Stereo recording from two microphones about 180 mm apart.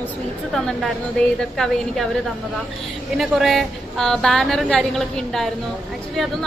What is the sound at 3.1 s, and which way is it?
A woman's voice, centre (ahead or behind).